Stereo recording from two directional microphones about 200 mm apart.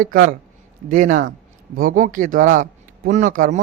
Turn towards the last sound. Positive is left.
turn(degrees=-40)  # may be behind; listen again after turning